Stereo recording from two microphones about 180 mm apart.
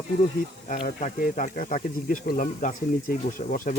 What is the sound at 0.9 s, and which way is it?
Speech, 45° left (ahead or behind).